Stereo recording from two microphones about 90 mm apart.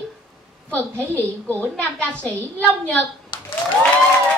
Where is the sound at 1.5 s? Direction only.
15° left (ahead or behind).